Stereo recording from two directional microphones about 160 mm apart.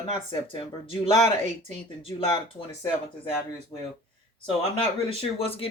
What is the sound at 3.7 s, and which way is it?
Speech, 35° left (ahead or behind).